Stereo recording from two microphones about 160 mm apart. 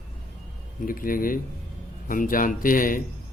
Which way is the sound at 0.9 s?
60° left (ahead or behind).